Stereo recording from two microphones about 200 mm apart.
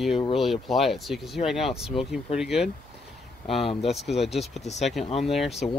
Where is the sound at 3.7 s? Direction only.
30° left (ahead or behind).